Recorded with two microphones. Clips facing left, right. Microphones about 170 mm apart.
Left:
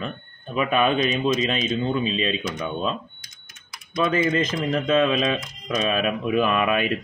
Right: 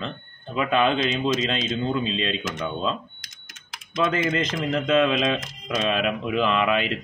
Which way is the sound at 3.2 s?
90° right.